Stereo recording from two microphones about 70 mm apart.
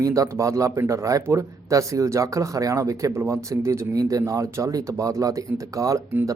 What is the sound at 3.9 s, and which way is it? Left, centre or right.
A man's voice, right.